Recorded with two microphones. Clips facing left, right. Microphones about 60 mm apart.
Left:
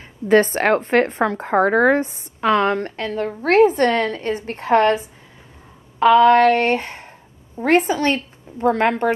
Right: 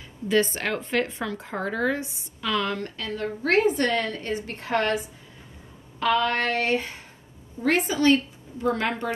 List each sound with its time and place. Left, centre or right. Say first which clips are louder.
0.3 s a woman's voice: left 9 dB; left